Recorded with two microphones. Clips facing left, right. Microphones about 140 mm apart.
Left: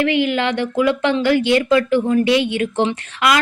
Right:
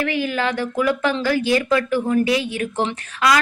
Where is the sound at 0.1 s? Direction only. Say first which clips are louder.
Left 4 dB; 25° left (ahead or behind).